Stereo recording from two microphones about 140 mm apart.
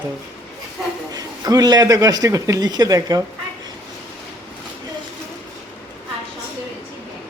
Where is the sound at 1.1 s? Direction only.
25° right (ahead or behind).